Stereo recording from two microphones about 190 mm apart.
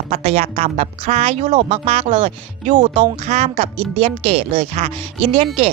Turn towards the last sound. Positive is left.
turn(degrees=-30)  # may be behind; listen again after turning